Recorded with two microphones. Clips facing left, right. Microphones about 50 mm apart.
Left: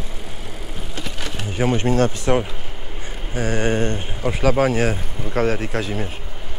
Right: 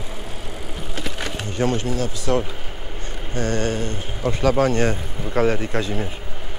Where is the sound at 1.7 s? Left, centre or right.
Left.